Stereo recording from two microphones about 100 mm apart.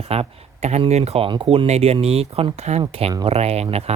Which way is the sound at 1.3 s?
65° right (ahead or behind).